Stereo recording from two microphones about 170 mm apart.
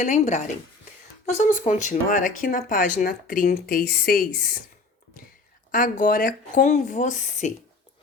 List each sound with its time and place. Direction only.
0.0 s speech: 45° left (ahead or behind); by 4.5 s 60° left (ahead or behind)
5.7 s speech: 50° left (ahead or behind)